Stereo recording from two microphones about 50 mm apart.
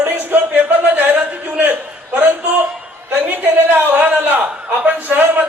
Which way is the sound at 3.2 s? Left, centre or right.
Right.